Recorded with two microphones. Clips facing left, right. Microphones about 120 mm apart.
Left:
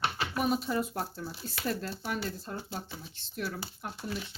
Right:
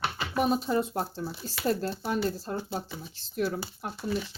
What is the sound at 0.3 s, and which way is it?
Speech, 30° right (ahead or behind).